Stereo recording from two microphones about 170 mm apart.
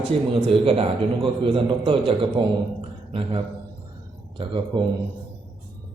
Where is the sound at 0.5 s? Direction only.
35° right (ahead or behind).